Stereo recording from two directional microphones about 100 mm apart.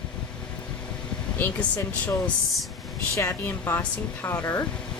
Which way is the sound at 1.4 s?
15° left (ahead or behind).